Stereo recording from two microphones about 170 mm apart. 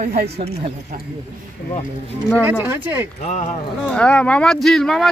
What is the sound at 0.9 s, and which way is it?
Speech, 55° right (ahead or behind).